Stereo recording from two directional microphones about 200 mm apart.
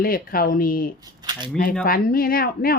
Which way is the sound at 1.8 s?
45° left (ahead or behind).